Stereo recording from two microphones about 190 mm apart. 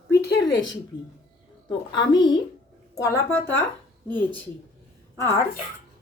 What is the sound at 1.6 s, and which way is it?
A woman's voice, 25° left (ahead or behind).